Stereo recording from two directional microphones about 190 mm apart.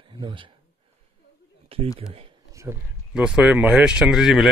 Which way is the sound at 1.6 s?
30° right (ahead or behind).